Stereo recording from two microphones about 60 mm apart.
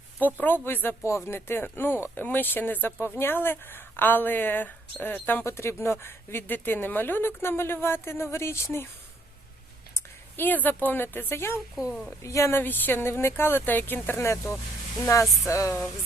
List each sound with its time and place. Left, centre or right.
0.3 s speech: left
1.0 s speech: left
5.5 s speech: left
9.9 s a woman's voice: left
11.7 s a woman's voice: centre
12.2 s a sound: left
12.5 s speech: left
15.0 s a sound: left